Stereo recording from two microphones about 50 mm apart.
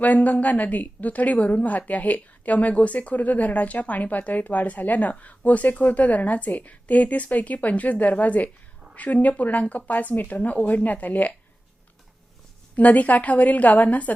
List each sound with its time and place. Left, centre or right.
0.0 s speech: left
12.7 s speech: left